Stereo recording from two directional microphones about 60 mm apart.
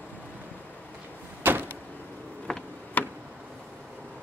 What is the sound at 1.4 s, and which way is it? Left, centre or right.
Door, right.